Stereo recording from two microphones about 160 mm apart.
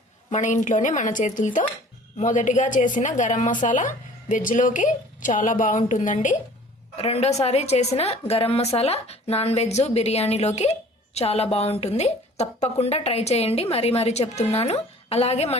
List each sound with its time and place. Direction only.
0.3 s a woman's voice: 50° left (ahead or behind)
6.9 s speech: 40° left (ahead or behind)